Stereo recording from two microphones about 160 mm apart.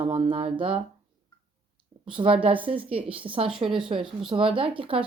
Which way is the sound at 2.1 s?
35° right (ahead or behind).